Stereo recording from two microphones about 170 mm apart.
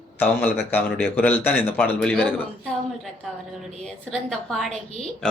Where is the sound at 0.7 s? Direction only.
10° left (ahead or behind).